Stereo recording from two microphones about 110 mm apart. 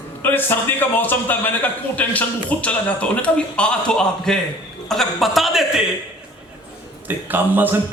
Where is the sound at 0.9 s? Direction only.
15° left (ahead or behind); by 5.6 s centre (ahead or behind).